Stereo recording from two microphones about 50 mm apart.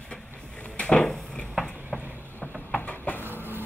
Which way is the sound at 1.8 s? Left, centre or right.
Right.